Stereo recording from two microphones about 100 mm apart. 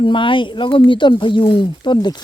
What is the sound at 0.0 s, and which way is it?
Speech, 55° left (ahead or behind).